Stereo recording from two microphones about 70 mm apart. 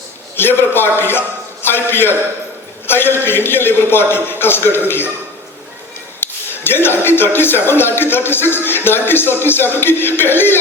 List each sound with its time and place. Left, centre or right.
0.3 s speech: left
6.1 s speech: left